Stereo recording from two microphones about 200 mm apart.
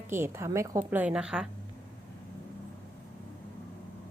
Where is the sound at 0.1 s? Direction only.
10° right (ahead or behind).